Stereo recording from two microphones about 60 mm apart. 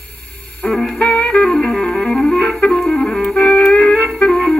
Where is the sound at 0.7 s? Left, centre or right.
Centre.